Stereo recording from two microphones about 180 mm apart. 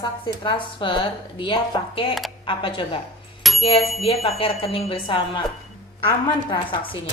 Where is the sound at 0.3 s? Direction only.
25° left (ahead or behind).